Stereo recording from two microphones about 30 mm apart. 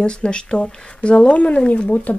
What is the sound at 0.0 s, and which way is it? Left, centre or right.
Speech, left.